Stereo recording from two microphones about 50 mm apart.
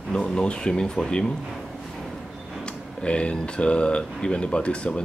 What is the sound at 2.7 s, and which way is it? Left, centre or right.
Speech, left.